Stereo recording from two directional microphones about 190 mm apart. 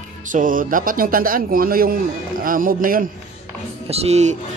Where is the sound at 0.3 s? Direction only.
45° right (ahead or behind).